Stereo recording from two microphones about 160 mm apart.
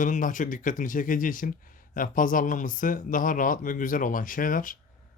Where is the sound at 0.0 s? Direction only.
55° left (ahead or behind).